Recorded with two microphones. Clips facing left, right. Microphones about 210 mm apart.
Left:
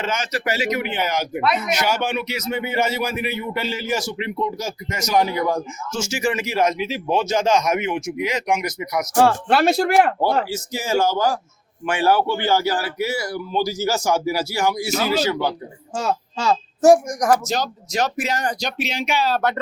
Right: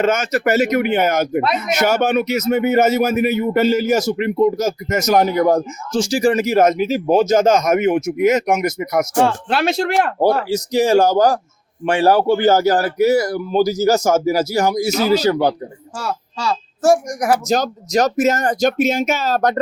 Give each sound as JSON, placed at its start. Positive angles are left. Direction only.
{"t": 0.0, "sound": "speech", "side_deg": -50}
{"t": 9.1, "sound": "speech", "side_deg": 5}
{"t": 10.2, "sound": "a man's voice", "side_deg": -40}
{"t": 16.0, "sound": "speech", "side_deg": 20}
{"t": 17.1, "sound": "speech", "side_deg": -5}
{"t": 17.5, "sound": "speech", "side_deg": -45}